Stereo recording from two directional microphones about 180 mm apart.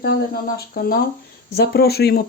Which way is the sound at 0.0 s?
60° left (ahead or behind).